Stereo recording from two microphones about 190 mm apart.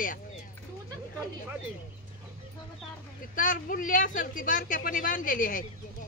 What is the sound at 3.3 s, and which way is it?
A woman's voice, 45° left (ahead or behind).